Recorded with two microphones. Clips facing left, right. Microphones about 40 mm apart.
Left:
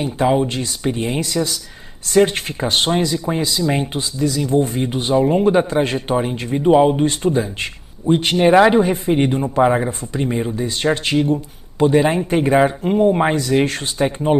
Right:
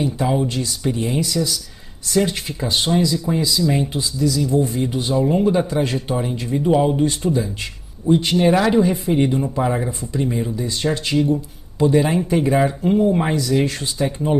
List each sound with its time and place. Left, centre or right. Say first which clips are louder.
0.0 s speech: left 3 dB; left